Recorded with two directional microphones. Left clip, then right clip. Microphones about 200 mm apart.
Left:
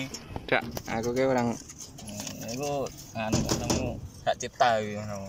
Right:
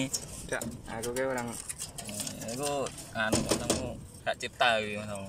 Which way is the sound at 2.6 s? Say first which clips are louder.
Left 1 dB; 5° left (ahead or behind).